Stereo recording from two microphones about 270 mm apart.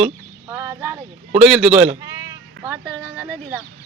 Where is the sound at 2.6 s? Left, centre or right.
Centre.